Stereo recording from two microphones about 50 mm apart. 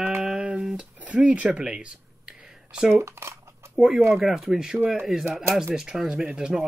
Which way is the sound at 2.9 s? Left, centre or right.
Right.